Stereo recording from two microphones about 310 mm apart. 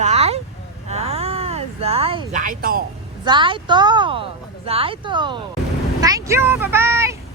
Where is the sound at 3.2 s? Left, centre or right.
Centre.